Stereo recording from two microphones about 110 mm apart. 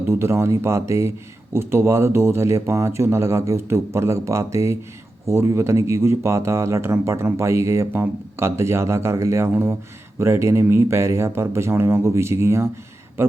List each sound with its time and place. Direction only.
0.1 s speech: 25° right (ahead or behind)